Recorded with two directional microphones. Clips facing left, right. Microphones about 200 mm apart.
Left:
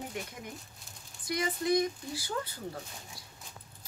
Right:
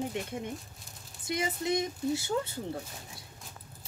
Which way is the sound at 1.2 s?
25° right (ahead or behind).